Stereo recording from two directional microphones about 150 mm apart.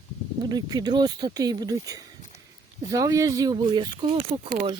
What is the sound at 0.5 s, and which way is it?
Speech, 25° right (ahead or behind).